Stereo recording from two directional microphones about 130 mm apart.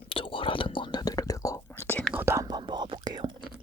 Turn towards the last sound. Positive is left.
turn(degrees=-35)  # may be behind; listen again after turning